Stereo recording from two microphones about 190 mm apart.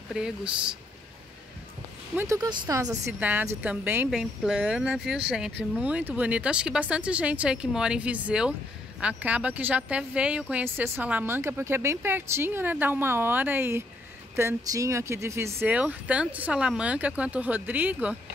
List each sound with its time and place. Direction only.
0.1 s speech: 5° right (ahead or behind)
2.1 s speech: 15° right (ahead or behind)